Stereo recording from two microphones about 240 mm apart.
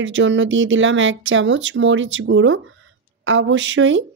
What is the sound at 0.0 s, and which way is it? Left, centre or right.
Speech, right.